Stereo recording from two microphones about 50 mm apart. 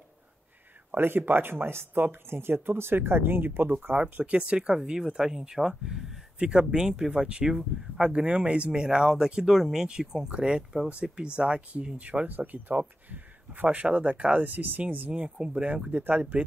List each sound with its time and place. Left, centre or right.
0.9 s speech: right
4.0 s speech: centre
12.3 s speech: right
15.1 s speech: centre